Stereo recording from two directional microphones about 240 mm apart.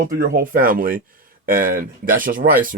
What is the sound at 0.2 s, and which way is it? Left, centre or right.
Speech, right.